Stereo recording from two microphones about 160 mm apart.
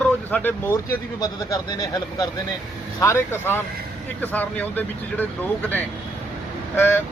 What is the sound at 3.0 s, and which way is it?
Speech, 15° left (ahead or behind).